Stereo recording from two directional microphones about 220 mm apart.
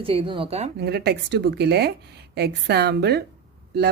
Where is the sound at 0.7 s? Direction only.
45° right (ahead or behind).